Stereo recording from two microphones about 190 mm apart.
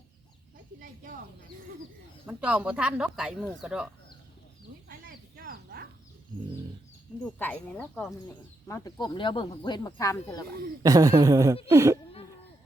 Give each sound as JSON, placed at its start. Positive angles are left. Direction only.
{"t": 2.2, "sound": "speech", "side_deg": -5}
{"t": 4.9, "sound": "a sound", "side_deg": -50}
{"t": 6.3, "sound": "bird", "side_deg": -25}
{"t": 7.3, "sound": "speech", "side_deg": 10}
{"t": 10.8, "sound": "speech", "side_deg": -20}